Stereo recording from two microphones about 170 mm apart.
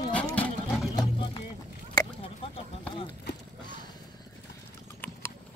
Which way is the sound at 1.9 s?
30° left (ahead or behind).